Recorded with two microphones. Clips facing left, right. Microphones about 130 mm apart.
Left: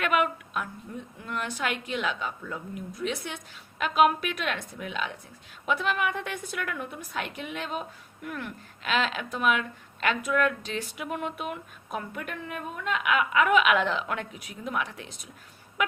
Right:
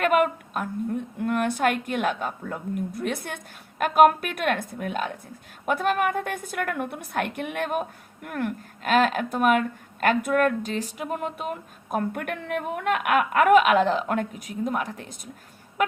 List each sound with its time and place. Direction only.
0.0 s a woman's voice: 45° right (ahead or behind)